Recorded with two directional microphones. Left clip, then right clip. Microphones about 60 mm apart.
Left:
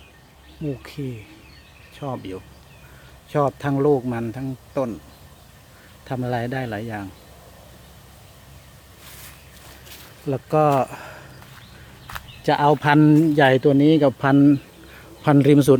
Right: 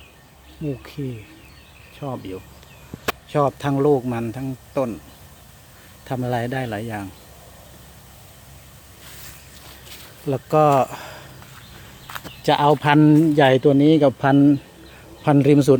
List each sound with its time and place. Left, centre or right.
0.8 s speech: centre
2.0 s speech: centre
6.1 s speech: centre
9.0 s boat: right
10.2 s speech: centre
10.8 s a sound: centre
12.4 s speech: centre
14.9 s a sound: left